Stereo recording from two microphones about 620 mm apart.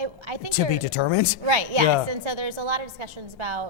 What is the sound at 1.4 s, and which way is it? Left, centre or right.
A woman's voice, right.